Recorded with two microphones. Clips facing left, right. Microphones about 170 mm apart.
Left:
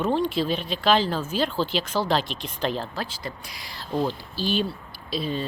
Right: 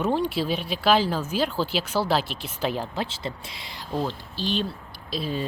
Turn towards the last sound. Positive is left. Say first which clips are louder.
# left 1 dB
turn(degrees=0)  # may be behind; listen again after turning